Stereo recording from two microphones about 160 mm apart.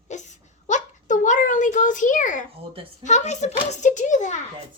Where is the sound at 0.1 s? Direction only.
50° left (ahead or behind).